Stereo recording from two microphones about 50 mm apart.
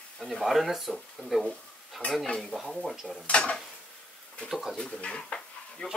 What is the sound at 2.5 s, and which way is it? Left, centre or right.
Speech, centre.